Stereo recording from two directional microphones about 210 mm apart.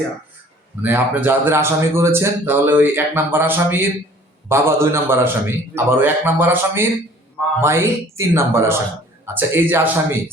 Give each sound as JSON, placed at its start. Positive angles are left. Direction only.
{"t": 0.8, "sound": "a man's voice", "side_deg": -10}